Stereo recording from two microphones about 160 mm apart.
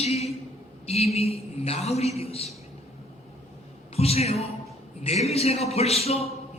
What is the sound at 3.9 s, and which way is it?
A man's voice, 40° left (ahead or behind).